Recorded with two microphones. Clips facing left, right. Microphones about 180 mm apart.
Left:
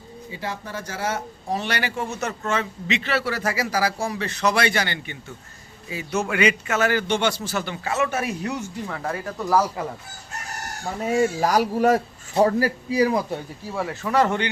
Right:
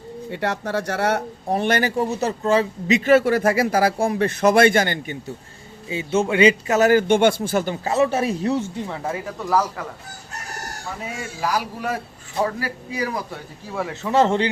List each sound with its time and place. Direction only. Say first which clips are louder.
0.3 s speech: right 7 dB; 70° right (ahead or behind); by 5.1 s 50° right (ahead or behind)
5.9 s a man's voice: right 5 dB; 25° right (ahead or behind)
8.9 s speech: right 2 dB; 20° right (ahead or behind)
9.4 s a man's voice: left 1 dB; centre (ahead or behind)
11.1 s a man's voice: left 6 dB; 40° left (ahead or behind)
13.9 s speech: right 3 dB; 25° right (ahead or behind)